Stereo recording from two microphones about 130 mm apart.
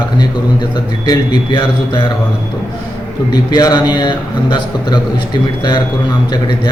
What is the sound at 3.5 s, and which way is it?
A man's voice, 30° left (ahead or behind).